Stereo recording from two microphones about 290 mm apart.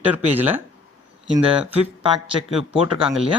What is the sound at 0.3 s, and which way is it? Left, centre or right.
Speech, centre.